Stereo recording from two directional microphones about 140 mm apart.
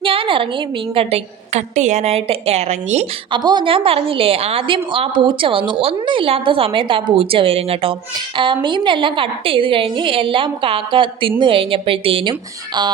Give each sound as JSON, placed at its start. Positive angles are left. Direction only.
{"t": 0.0, "sound": "a sound", "side_deg": -40}
{"t": 0.9, "sound": "a woman's voice", "side_deg": -50}
{"t": 3.3, "sound": "a woman's voice", "side_deg": -35}